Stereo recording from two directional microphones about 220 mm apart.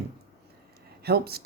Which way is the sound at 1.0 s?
45° right (ahead or behind).